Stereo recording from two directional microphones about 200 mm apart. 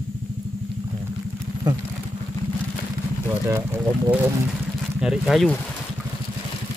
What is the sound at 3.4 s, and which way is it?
Speech, 15° right (ahead or behind).